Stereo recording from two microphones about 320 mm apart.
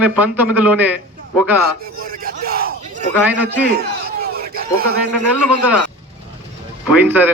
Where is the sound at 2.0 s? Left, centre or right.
Right.